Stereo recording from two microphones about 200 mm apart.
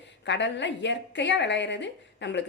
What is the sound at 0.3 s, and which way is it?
A woman's voice, 60° left (ahead or behind).